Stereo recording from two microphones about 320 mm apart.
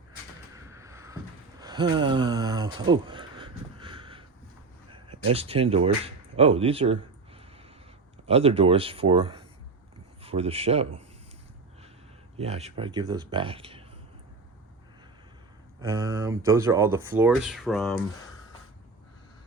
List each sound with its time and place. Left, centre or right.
0.5 s a sound: centre
5.3 s speech: centre
8.3 s speech: centre
12.4 s speech: centre
15.8 s speech: centre